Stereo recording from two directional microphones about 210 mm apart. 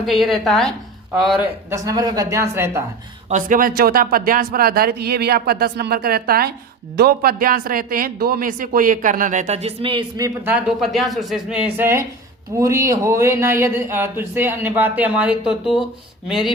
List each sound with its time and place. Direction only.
0.0 s a woman's voice: centre (ahead or behind)
1.7 s speech: 15° right (ahead or behind)
3.2 s speech: 40° right (ahead or behind); by 15.8 s 5° right (ahead or behind)